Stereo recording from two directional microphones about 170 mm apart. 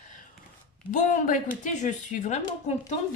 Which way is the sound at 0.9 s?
50° left (ahead or behind).